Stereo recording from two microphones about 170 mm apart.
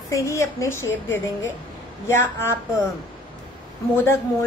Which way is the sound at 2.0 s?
15° left (ahead or behind).